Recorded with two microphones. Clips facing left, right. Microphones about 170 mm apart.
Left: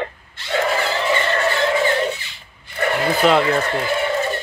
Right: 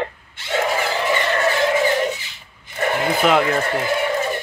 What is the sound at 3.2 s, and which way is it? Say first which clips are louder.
Speech: left 2 dB; 10° right (ahead or behind).